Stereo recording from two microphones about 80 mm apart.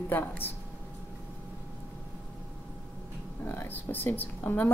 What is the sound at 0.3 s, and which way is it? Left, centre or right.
Speech, left.